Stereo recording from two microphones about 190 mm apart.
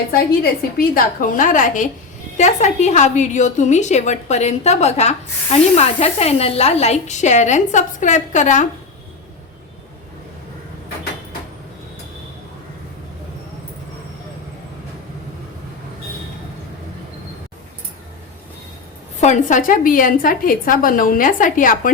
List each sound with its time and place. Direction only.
0.8 s a woman's voice: 45° left (ahead or behind)
19.2 s a woman's voice: 40° left (ahead or behind)